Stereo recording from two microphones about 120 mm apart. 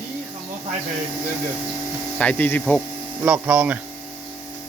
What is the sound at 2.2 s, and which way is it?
Speech, 10° left (ahead or behind).